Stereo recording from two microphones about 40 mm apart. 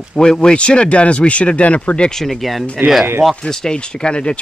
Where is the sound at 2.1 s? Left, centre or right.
Centre.